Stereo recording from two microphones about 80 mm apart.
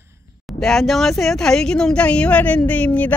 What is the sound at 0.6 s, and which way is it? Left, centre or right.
Speech, centre.